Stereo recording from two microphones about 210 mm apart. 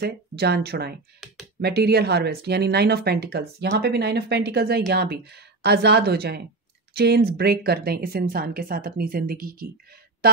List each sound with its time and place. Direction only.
0.0 s speech: 50° right (ahead or behind)
10.2 s music: 45° right (ahead or behind)